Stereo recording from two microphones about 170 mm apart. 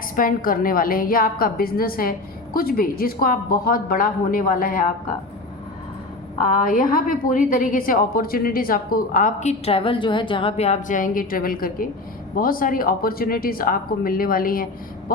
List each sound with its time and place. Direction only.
0.2 s a woman's voice: 55° left (ahead or behind)
6.4 s a woman's voice: 55° left (ahead or behind)